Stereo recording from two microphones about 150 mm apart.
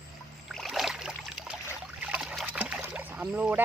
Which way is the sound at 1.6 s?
10° right (ahead or behind).